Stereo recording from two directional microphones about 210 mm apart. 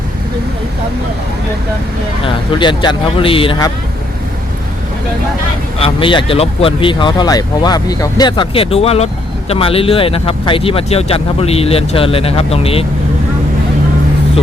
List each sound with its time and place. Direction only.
2.2 s speech: 20° left (ahead or behind)
5.8 s speech: 25° left (ahead or behind)